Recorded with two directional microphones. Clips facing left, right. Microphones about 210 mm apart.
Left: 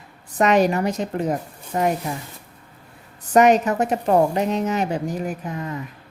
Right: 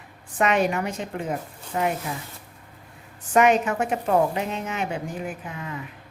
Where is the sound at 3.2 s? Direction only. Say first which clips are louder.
Left 4 dB; 40° left (ahead or behind).